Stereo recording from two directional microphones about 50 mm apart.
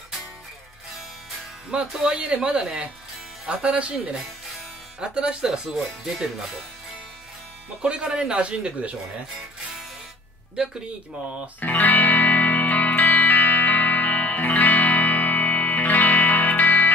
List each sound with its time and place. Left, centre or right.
1.7 s speech: centre
7.8 s speech: right
8.1 s speech: centre
8.4 s speech: right
11.6 s music: left